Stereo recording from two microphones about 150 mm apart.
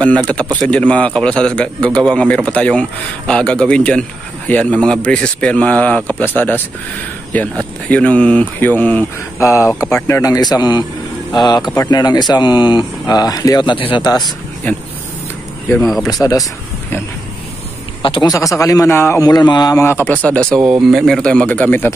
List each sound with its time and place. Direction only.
0.6 s a man's voice: 5° left (ahead or behind); by 14.3 s 30° left (ahead or behind)
16.1 s speech: 25° left (ahead or behind)
18.0 s a man's voice: 35° left (ahead or behind)
18.3 s a man's voice: 20° left (ahead or behind)